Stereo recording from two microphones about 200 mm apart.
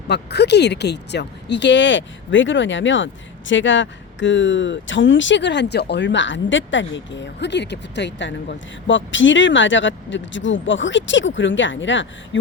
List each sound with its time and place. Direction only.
0.1 s speech: 55° left (ahead or behind)